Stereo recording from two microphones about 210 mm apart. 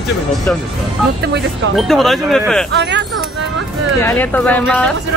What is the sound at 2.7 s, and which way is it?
Speech, 55° right (ahead or behind).